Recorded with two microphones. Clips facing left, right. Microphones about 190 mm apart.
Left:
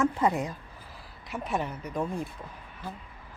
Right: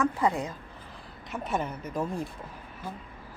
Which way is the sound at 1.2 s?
Centre (ahead or behind).